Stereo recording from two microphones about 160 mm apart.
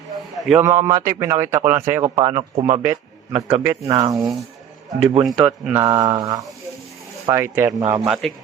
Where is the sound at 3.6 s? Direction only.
20° right (ahead or behind).